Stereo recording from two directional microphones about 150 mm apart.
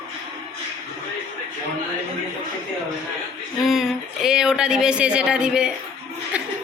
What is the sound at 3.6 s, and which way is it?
Speech, centre (ahead or behind).